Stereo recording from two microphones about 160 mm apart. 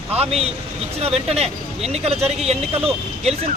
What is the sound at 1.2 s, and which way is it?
A man's voice, 40° right (ahead or behind).